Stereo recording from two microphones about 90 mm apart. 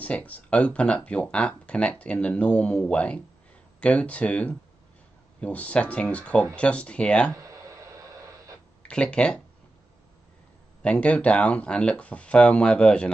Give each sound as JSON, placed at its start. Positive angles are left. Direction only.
{"t": 0.0, "sound": "speech", "side_deg": 15}
{"t": 7.3, "sound": "a sound", "side_deg": -35}
{"t": 8.8, "sound": "speech", "side_deg": 10}
{"t": 10.8, "sound": "speech", "side_deg": 10}